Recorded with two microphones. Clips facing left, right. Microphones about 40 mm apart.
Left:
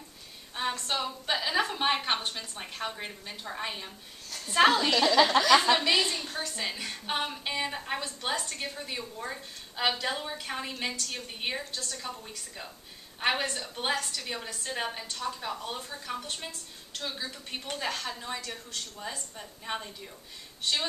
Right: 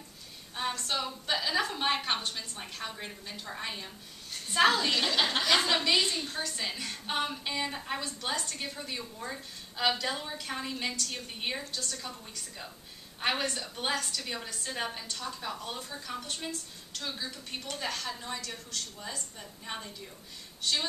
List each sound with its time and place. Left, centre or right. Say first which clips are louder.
0.6 s a woman's voice: left 2 dB; centre
4.9 s speech: left 6 dB; left
6.2 s a woman's voice: left 1 dB; centre